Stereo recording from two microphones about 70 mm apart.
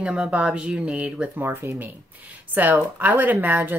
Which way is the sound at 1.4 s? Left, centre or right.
Right.